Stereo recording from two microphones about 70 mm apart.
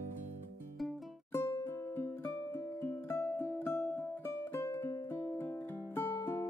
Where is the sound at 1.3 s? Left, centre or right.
Left.